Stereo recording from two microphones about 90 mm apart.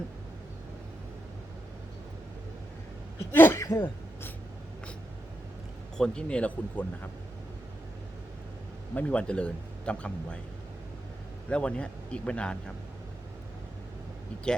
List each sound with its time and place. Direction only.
3.3 s speech: 25° left (ahead or behind)
3.6 s speech: 35° left (ahead or behind)
6.0 s speech: 10° left (ahead or behind)
9.0 s speech: 15° left (ahead or behind)
11.4 s speech: 10° left (ahead or behind)